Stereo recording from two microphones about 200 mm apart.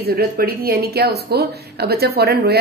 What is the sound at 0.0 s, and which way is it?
Speech, 50° right (ahead or behind).